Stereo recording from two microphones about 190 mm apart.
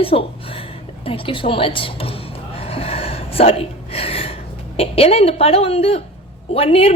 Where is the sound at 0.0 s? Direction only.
30° left (ahead or behind).